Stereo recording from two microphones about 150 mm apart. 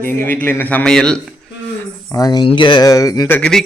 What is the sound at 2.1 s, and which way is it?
Speech, 25° left (ahead or behind).